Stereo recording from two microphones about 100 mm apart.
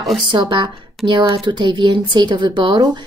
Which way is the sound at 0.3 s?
50° right (ahead or behind).